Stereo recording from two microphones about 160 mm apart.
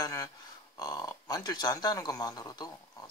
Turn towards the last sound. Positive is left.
turn(degrees=25)  # may be behind; listen again after turning